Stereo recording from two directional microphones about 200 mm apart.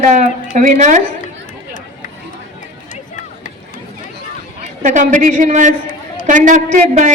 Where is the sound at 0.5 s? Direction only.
40° right (ahead or behind).